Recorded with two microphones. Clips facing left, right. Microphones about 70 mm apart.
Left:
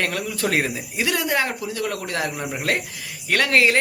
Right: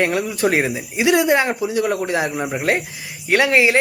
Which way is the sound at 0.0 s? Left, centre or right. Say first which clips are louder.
Right 6 dB; right.